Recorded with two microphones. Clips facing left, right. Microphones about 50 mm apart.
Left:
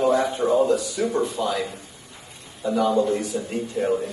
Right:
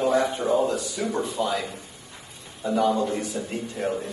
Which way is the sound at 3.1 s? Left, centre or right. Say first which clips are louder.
Left 4 dB; right.